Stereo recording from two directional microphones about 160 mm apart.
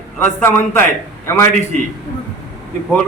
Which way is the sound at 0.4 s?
15° left (ahead or behind).